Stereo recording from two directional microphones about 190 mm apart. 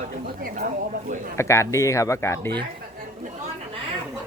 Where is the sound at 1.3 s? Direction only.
15° left (ahead or behind).